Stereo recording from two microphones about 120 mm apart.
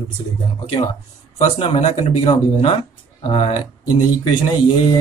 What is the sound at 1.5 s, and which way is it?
Speech, 55° left (ahead or behind).